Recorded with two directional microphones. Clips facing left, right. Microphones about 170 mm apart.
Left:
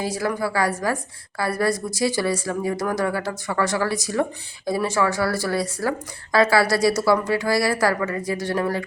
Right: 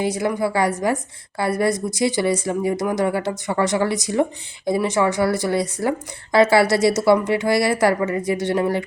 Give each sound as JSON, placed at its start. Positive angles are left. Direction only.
{"t": 0.0, "sound": "speech", "side_deg": -20}